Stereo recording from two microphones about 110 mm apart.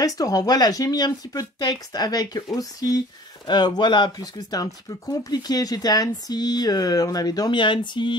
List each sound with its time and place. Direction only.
0.0 s speech: 35° left (ahead or behind)